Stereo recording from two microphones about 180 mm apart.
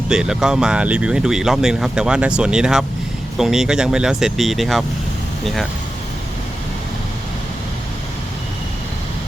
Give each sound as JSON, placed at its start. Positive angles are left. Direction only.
{"t": 0.1, "sound": "speech", "side_deg": -5}